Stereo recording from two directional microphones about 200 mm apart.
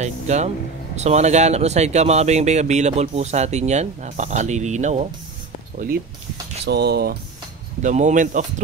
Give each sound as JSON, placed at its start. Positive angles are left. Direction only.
{"t": 0.0, "sound": "vehicle", "side_deg": -35}
{"t": 0.9, "sound": "speech", "side_deg": -35}
{"t": 6.6, "sound": "speech", "side_deg": -55}
{"t": 7.8, "sound": "speech", "side_deg": -40}